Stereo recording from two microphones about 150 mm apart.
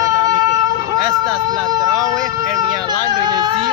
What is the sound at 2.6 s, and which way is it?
Speech, 25° right (ahead or behind).